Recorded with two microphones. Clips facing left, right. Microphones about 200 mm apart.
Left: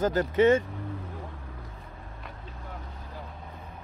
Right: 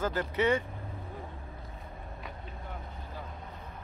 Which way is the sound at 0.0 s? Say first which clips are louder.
Left 7 dB; 40° left (ahead or behind).